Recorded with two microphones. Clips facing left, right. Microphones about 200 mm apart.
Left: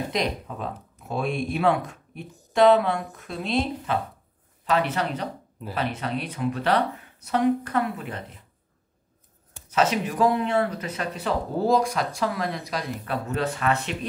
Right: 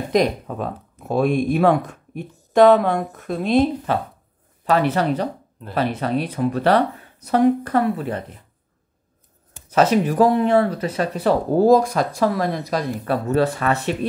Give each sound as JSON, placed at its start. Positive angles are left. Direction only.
{"t": 0.1, "sound": "speech", "side_deg": -50}
{"t": 4.6, "sound": "speech", "side_deg": -40}
{"t": 9.8, "sound": "speech", "side_deg": -40}